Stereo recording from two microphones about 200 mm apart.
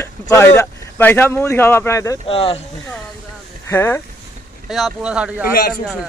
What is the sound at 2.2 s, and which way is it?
Speech, 30° left (ahead or behind).